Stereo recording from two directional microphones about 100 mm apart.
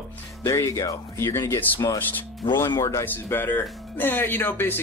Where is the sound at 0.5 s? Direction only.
30° left (ahead or behind).